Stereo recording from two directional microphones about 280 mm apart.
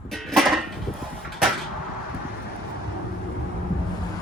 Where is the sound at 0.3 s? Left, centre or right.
Centre.